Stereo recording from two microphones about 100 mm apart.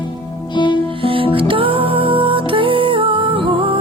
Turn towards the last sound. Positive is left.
turn(degrees=-60)  # may be behind; listen again after turning